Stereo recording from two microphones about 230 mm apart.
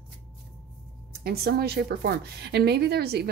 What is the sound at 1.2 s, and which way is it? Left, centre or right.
A woman's voice, right.